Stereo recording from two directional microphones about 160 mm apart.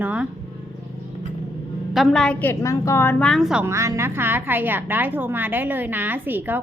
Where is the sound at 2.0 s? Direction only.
5° left (ahead or behind).